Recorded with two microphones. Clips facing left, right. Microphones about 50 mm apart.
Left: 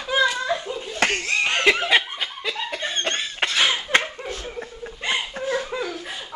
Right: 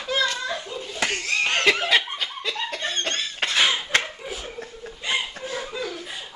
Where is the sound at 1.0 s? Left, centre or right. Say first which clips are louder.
Left 3 dB; left.